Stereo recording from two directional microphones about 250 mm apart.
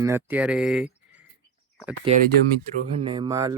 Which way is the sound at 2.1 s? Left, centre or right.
Right.